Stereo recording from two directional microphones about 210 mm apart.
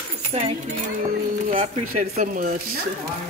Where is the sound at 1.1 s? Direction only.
35° right (ahead or behind).